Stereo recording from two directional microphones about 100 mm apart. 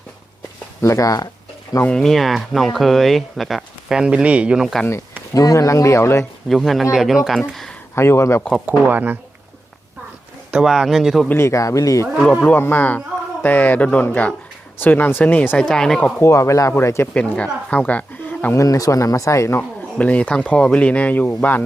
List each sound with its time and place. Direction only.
0.8 s speech: 30° left (ahead or behind)
1.8 s speech: 5° left (ahead or behind); by 4.7 s 10° right (ahead or behind)
5.3 s speech: 35° left (ahead or behind)
6.5 s speech: centre (ahead or behind)
7.5 s a sound: centre (ahead or behind)
7.9 s speech: 25° left (ahead or behind)
8.8 s speech: 15° right (ahead or behind)
10.5 s speech: 5° right (ahead or behind)
11.3 s speech: 25° left (ahead or behind)
12.2 s speech: 15° left (ahead or behind)
16.2 s speech: 30° left (ahead or behind)
17.2 s speech: 15° left (ahead or behind)
18.5 s speech: 35° left (ahead or behind)
20.0 s speech: 15° left (ahead or behind)